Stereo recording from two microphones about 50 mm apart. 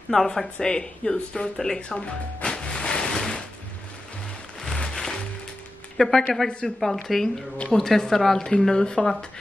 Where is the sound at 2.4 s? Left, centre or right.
Centre.